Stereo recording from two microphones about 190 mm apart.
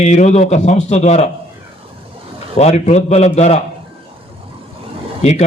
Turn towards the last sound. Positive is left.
turn(degrees=35)  # may be behind; listen again after turning